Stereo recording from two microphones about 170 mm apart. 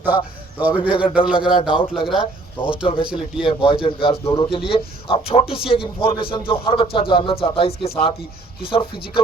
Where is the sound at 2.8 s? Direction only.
30° left (ahead or behind).